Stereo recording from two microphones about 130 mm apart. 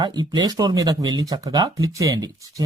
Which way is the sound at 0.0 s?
30° right (ahead or behind).